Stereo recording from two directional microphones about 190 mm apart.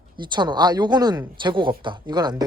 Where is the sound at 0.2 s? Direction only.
25° right (ahead or behind).